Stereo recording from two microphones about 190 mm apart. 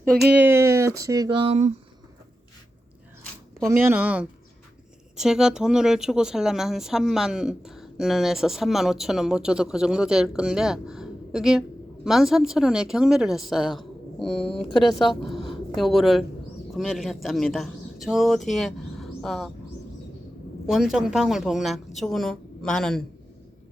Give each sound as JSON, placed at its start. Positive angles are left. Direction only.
{"t": 0.1, "sound": "speech", "side_deg": -5}
{"t": 3.7, "sound": "speech", "side_deg": -10}
{"t": 20.7, "sound": "speech", "side_deg": 0}